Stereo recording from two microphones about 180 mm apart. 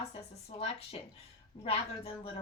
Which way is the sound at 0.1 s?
35° left (ahead or behind).